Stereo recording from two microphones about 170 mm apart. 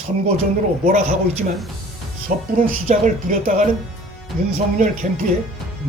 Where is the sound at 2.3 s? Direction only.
50° right (ahead or behind).